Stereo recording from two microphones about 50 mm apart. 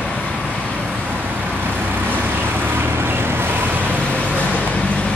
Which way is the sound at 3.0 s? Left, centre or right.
Right.